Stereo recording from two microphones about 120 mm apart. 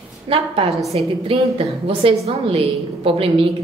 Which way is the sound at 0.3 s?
50° right (ahead or behind).